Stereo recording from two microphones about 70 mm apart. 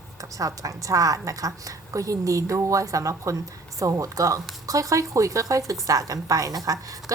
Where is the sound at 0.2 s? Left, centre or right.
Right.